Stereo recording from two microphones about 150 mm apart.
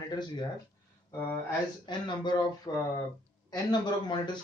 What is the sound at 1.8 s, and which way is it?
Speech, 30° left (ahead or behind).